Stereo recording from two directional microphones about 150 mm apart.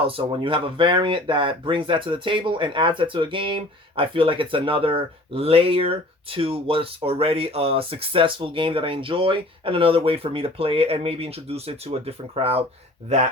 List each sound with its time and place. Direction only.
0.0 s speech: 35° right (ahead or behind)